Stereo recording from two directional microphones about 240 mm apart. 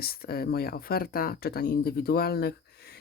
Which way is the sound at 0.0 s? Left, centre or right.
Left.